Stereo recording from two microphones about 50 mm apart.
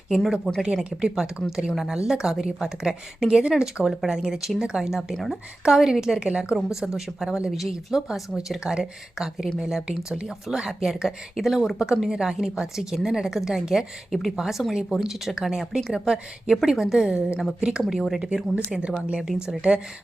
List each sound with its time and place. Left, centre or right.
0.6 s a woman's voice: centre
5.1 s a woman's voice: centre
5.6 s a woman's voice: centre